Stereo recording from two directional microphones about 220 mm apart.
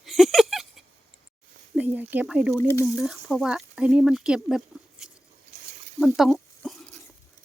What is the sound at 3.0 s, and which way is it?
Speech, centre (ahead or behind).